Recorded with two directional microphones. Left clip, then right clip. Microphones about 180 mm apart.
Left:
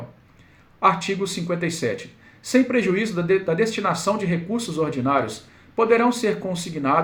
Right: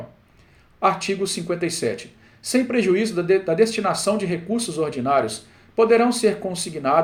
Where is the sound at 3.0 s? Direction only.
30° right (ahead or behind).